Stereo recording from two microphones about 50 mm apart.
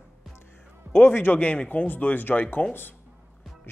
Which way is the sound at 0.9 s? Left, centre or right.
Left.